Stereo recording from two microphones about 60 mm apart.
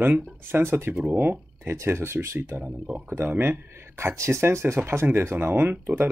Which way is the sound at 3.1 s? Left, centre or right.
Right.